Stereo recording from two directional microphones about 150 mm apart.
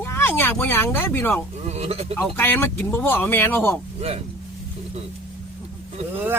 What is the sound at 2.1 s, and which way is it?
Speech, 15° left (ahead or behind).